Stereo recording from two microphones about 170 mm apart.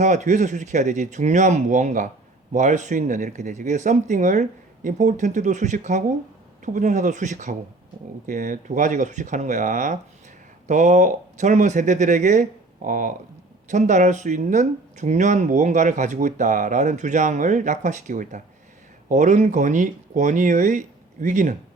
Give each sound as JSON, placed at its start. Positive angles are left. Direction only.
{"t": 0.0, "sound": "speech", "side_deg": -45}